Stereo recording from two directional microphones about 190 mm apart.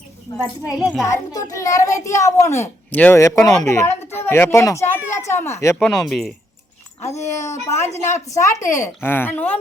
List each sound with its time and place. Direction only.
0.3 s a child's voice: 10° right (ahead or behind)
1.0 s a child's voice: 20° left (ahead or behind)
3.4 s speech: centre (ahead or behind)
3.7 s speech: 15° left (ahead or behind)
5.0 s a sound: 15° left (ahead or behind)
5.8 s speech: centre (ahead or behind)
7.1 s a child's voice: 15° left (ahead or behind)